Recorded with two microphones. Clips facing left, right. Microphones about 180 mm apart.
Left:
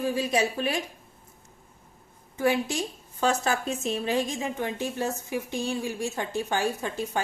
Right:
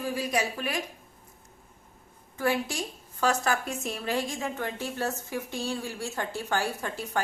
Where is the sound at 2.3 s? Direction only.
20° left (ahead or behind).